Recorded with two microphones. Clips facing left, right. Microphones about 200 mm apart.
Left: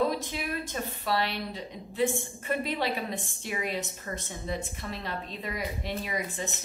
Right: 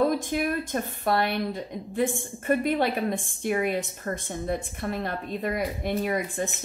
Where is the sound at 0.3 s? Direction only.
50° right (ahead or behind).